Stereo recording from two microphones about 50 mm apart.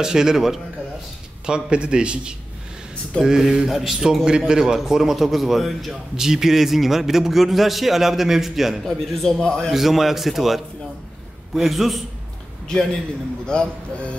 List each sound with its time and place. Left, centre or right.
0.0 s a man's voice: centre
9.4 s a man's voice: centre
9.7 s a man's voice: centre
13.5 s speech: centre